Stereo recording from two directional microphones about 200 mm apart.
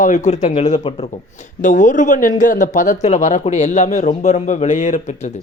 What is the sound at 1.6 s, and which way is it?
Speech, 40° left (ahead or behind).